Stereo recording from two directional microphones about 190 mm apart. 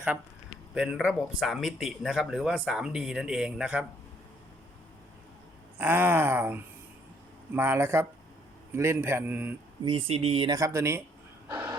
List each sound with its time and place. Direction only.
0.7 s speech: centre (ahead or behind)
5.8 s a man's voice: 10° right (ahead or behind)
9.8 s speech: 30° right (ahead or behind)
11.4 s vehicle: 15° right (ahead or behind)